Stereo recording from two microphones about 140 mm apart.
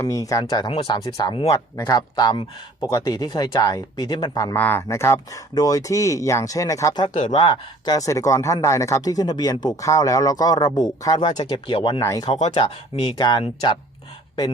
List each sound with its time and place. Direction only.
0.0 s speech: 25° left (ahead or behind)
4.5 s speech: 15° left (ahead or behind)
7.1 s speech: 60° left (ahead or behind)
7.3 s speech: 30° left (ahead or behind)
11.9 s speech: 25° left (ahead or behind)
12.5 s speech: 45° left (ahead or behind)
13.1 s speech: 30° left (ahead or behind)